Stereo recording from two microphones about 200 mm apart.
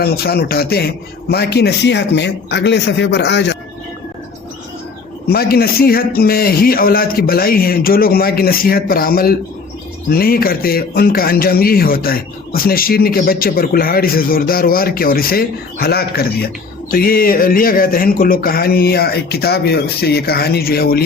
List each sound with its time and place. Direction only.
0.0 s a man's voice: 50° left (ahead or behind)
5.3 s speech: 50° left (ahead or behind)